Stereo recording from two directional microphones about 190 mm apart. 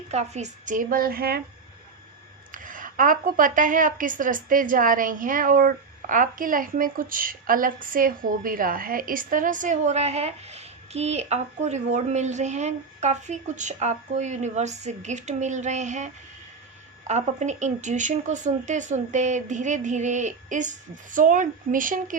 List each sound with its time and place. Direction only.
0.1 s a woman's voice: 35° right (ahead or behind); by 1.4 s 50° right (ahead or behind)
2.5 s a woman's voice: 45° right (ahead or behind)